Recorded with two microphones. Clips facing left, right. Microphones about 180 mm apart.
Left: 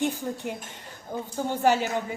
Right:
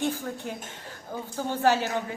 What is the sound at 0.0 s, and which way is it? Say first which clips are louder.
A woman's voice: left 2 dB; 15° left (ahead or behind).